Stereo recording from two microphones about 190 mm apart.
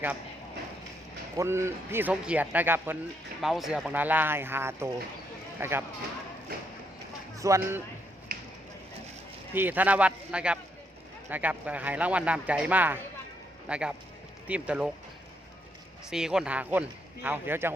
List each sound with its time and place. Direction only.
1.4 s speech: 15° right (ahead or behind)
7.3 s speech: 15° right (ahead or behind)
8.3 s a sound: 50° right (ahead or behind)
9.6 s speech: 10° right (ahead or behind)
16.0 s speech: 5° right (ahead or behind)